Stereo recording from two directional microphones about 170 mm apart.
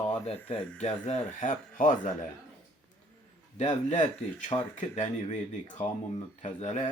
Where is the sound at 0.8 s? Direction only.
40° left (ahead or behind).